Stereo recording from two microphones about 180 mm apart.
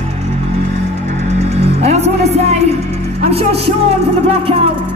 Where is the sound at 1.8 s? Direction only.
40° right (ahead or behind).